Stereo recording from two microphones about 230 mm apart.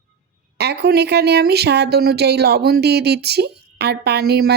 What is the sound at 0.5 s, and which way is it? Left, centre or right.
Speech, right.